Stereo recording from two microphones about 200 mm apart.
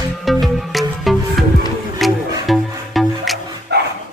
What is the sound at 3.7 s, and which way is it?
Dog, 55° right (ahead or behind).